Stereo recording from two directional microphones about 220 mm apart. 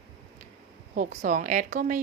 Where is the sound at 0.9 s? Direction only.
40° right (ahead or behind).